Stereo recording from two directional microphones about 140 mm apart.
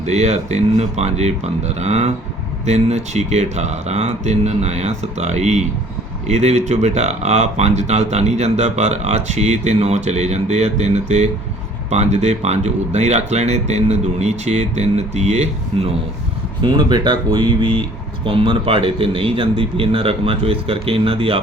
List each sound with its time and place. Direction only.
0.0 s speech: 50° right (ahead or behind)
16.6 s speech: 30° right (ahead or behind)